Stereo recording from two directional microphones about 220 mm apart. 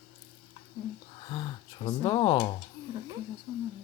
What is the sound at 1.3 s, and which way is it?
Speech, 20° left (ahead or behind).